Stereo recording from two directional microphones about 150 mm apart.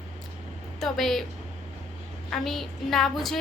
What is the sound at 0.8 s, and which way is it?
Speech, centre (ahead or behind).